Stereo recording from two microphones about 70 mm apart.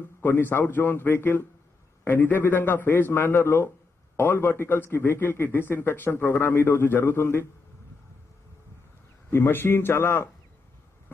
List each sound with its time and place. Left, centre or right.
0.2 s a man's voice: left
9.3 s a man's voice: left